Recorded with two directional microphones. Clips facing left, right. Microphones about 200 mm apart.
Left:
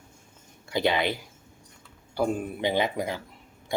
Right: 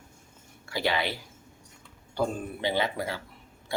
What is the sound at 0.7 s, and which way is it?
Speech, 20° left (ahead or behind).